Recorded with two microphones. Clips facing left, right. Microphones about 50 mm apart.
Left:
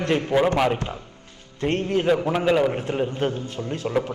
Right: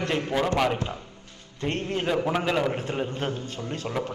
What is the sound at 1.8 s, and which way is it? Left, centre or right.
A man's voice, centre.